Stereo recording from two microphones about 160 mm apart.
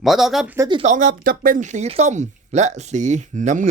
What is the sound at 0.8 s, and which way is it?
Speech, 55° right (ahead or behind).